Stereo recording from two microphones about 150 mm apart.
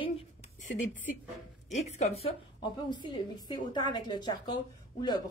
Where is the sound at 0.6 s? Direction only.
60° left (ahead or behind).